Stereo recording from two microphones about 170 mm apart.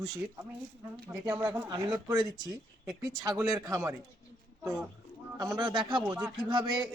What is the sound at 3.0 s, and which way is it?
Speech, 20° right (ahead or behind).